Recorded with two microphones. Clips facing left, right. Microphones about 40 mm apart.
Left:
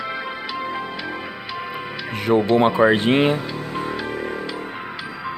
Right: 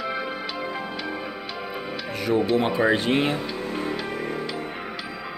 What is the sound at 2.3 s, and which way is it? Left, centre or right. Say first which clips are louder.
Speech: left 5 dB; left.